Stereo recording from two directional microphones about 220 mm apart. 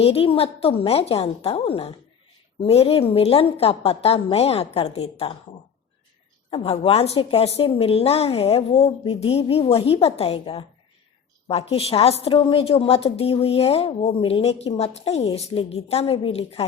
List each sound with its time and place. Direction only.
0.0 s a woman's voice: 25° left (ahead or behind)
6.5 s a woman's voice: 25° left (ahead or behind)